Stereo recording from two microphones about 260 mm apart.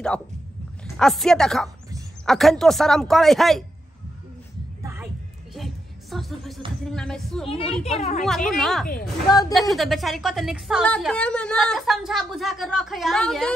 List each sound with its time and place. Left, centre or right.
0.9 s a woman's voice: centre
4.8 s music: centre
6.8 s a woman's voice: centre
7.4 s a child's voice: left
8.2 s a woman's voice: centre